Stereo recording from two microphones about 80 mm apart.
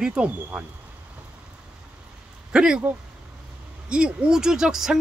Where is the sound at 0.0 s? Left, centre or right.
Centre.